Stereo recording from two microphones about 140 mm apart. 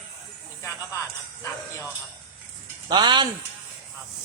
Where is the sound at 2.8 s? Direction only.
30° right (ahead or behind).